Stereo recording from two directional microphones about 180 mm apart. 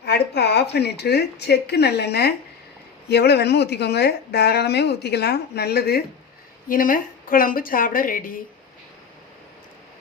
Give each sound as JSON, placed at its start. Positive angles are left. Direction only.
{"t": 0.0, "sound": "a woman's voice", "side_deg": 65}
{"t": 6.7, "sound": "a woman's voice", "side_deg": 50}